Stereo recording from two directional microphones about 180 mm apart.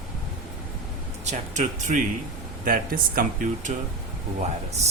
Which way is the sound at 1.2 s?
40° right (ahead or behind).